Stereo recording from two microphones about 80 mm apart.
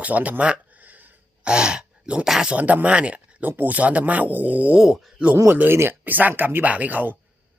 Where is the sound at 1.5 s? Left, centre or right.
Centre.